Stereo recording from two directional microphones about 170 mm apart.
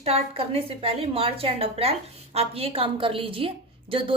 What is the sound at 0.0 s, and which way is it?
A woman's voice, 35° right (ahead or behind).